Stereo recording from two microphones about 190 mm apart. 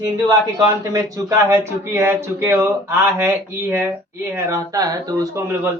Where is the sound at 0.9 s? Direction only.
15° right (ahead or behind).